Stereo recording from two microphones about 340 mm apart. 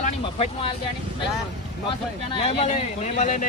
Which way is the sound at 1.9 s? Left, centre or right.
Centre.